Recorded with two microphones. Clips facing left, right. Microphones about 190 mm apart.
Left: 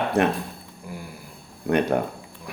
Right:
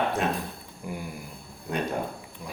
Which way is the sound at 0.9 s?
15° right (ahead or behind).